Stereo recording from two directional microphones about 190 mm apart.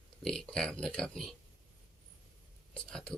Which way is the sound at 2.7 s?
5° left (ahead or behind).